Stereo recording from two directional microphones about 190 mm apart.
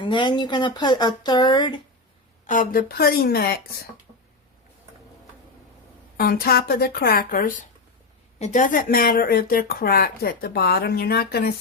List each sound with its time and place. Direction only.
0.0 s speech: 25° left (ahead or behind)
2.5 s speech: 45° left (ahead or behind)
6.1 s speech: 50° left (ahead or behind)